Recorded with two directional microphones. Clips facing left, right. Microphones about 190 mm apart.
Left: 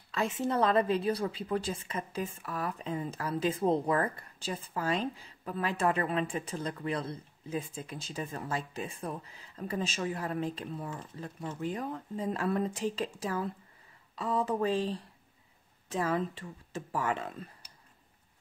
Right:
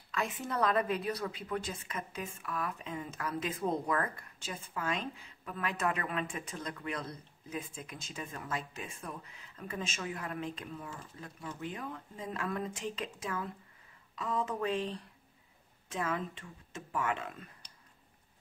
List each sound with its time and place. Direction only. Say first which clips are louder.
0.1 s a woman's voice: left 5 dB; 30° left (ahead or behind)